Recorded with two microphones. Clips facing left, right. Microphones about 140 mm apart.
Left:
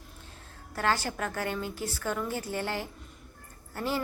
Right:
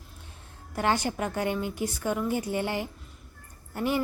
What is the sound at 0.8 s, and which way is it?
A woman's voice, 20° right (ahead or behind).